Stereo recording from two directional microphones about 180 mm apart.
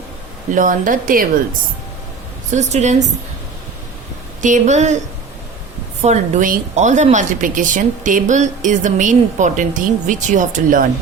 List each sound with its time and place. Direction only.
0.5 s speech: 50° right (ahead or behind)
2.5 s a woman's voice: 40° right (ahead or behind)
4.4 s a woman's voice: 40° right (ahead or behind)
6.0 s speech: 40° right (ahead or behind)